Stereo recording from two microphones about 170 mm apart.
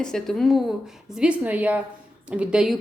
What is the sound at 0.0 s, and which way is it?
Speech, 5° left (ahead or behind).